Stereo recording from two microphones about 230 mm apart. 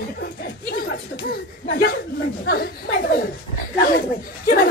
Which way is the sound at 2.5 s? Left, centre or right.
Left.